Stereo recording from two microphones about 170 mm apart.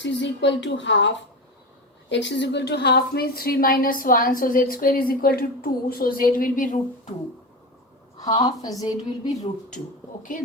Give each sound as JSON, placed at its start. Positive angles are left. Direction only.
{"t": 0.0, "sound": "a woman's voice", "side_deg": 90}
{"t": 8.2, "sound": "a woman's voice", "side_deg": 20}
{"t": 9.0, "sound": "speech", "side_deg": 45}